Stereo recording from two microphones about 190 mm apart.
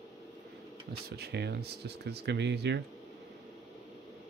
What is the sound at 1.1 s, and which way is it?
Speech, 60° right (ahead or behind).